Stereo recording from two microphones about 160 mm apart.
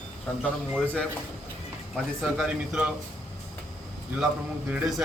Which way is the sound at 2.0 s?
Centre (ahead or behind).